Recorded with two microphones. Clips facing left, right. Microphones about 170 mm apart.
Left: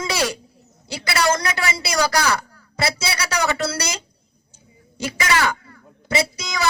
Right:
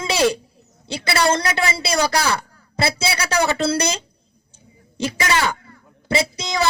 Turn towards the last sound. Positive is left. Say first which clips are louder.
# right 2 dB
turn(degrees=-30)  # may be behind; listen again after turning